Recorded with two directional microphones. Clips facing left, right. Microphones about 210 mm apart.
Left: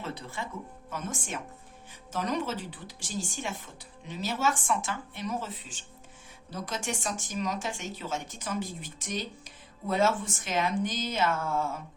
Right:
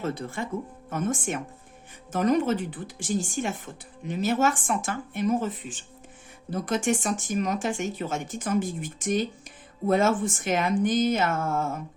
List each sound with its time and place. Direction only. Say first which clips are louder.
0.0 s speech: right 7 dB; 50° right (ahead or behind)